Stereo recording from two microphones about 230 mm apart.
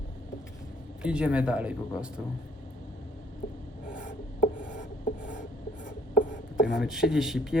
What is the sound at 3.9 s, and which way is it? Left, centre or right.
Rub, left.